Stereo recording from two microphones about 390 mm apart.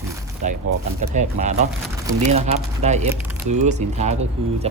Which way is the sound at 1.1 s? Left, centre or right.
Centre.